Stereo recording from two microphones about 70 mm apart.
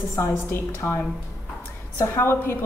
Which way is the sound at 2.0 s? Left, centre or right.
Left.